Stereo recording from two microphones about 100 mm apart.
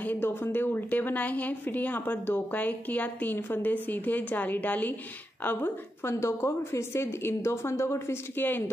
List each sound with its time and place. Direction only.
0.0 s a woman's voice: 20° left (ahead or behind)
6.1 s a woman's voice: 30° left (ahead or behind)